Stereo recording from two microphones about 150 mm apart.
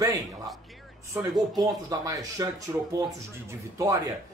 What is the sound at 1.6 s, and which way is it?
Speech, 25° right (ahead or behind).